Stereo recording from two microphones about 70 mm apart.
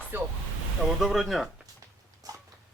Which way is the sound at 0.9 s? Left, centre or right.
Centre.